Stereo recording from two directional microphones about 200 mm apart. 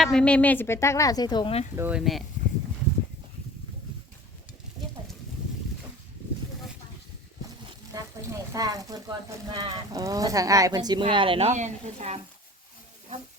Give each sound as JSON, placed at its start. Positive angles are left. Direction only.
{"t": 0.0, "sound": "a woman's voice", "side_deg": 5}
{"t": 1.7, "sound": "speech", "side_deg": -10}
{"t": 7.9, "sound": "speech", "side_deg": -20}